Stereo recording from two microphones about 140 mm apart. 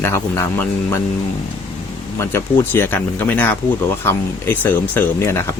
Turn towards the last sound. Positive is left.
turn(degrees=20)  # may be behind; listen again after turning